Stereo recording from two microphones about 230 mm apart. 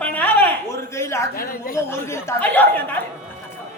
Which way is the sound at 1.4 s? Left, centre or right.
Left.